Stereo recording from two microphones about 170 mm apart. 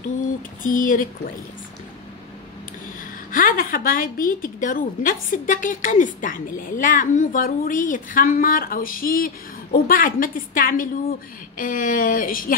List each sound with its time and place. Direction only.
0.6 s a woman's voice: 55° left (ahead or behind)
3.3 s a woman's voice: 55° left (ahead or behind)